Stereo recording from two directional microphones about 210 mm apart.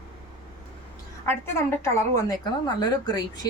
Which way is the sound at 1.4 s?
10° left (ahead or behind).